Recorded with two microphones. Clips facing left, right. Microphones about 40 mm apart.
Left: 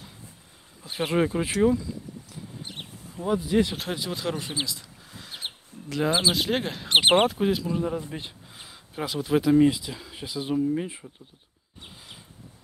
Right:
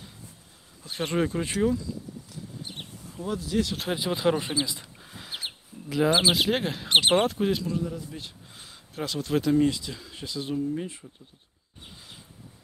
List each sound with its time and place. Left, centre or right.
0.8 s speech: centre
3.1 s speech: centre
3.9 s speech: centre
5.3 s bird: right
6.3 s speech: centre
7.0 s speech: centre
7.2 s speech: centre
7.7 s speech: left
8.5 s speech: centre